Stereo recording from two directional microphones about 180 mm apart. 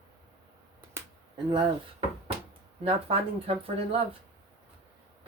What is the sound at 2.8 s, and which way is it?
Speech, 35° right (ahead or behind).